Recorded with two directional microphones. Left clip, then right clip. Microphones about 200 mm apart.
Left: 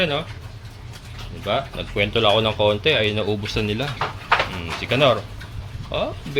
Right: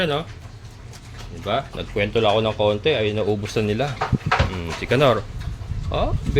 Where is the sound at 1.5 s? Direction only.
15° right (ahead or behind).